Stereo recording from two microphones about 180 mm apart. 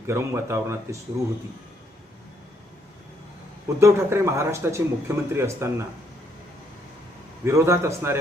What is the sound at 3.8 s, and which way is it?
A man's voice, 15° right (ahead or behind).